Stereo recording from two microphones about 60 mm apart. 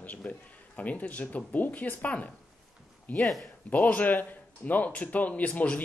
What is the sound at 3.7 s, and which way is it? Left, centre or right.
Speech, left.